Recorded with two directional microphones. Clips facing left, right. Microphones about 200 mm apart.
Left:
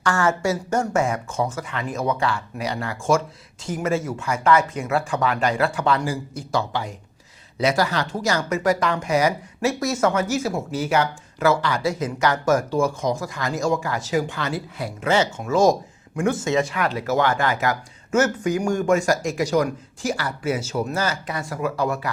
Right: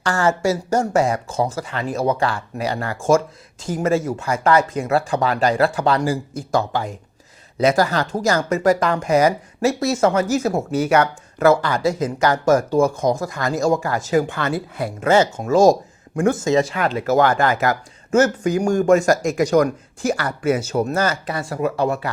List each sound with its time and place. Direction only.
0.0 s speech: 35° right (ahead or behind); by 11.1 s 65° right (ahead or behind)
11.4 s speech: 50° right (ahead or behind); by 17.0 s 30° right (ahead or behind)
17.1 s speech: 40° right (ahead or behind)
21.2 s speech: 30° right (ahead or behind)